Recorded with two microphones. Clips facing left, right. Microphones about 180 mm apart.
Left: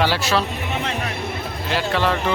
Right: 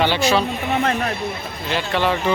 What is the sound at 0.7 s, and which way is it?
Music, 55° right (ahead or behind).